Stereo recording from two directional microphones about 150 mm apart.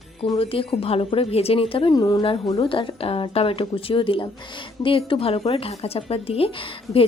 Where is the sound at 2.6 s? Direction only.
35° left (ahead or behind).